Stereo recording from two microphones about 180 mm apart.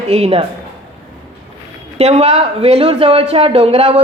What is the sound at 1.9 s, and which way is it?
A woman's voice, 35° right (ahead or behind).